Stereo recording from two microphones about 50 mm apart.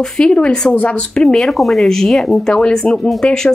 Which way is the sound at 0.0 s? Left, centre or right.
Centre.